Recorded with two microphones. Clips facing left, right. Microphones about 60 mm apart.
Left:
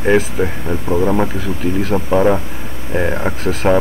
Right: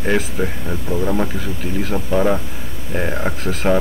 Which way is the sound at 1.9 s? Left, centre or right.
Centre.